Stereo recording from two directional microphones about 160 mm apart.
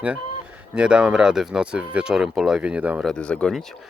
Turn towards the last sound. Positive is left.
turn(degrees=5)  # may be behind; listen again after turning